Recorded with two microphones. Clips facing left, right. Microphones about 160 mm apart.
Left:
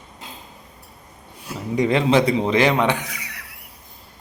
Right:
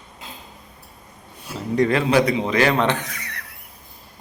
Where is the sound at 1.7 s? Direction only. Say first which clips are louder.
Even; 20° left (ahead or behind).